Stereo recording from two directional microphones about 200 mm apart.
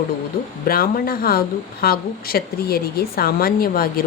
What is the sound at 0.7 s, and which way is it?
Speech, 45° left (ahead or behind).